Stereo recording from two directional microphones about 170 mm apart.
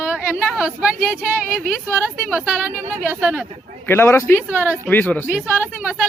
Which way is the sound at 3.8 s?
15° left (ahead or behind).